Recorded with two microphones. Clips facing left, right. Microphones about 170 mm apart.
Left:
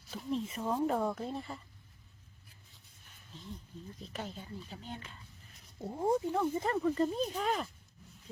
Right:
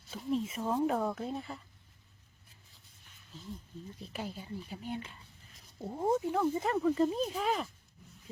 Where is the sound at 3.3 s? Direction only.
5° right (ahead or behind).